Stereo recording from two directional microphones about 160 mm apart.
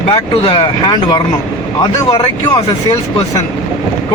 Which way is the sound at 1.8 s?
20° left (ahead or behind).